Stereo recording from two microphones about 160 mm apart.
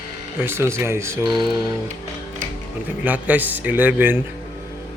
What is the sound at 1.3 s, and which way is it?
Music, 30° right (ahead or behind).